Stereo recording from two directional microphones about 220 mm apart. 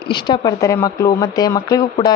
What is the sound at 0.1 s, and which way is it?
Speech, 20° left (ahead or behind).